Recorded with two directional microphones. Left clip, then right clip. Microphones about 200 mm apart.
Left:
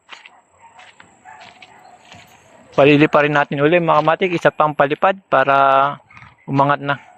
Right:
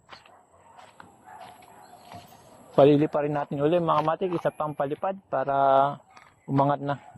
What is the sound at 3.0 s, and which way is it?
Speech, 15° left (ahead or behind).